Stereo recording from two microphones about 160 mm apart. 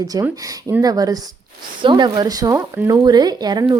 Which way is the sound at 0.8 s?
25° right (ahead or behind).